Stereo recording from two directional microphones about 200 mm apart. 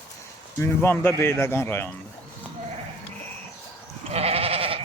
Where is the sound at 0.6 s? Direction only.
10° left (ahead or behind).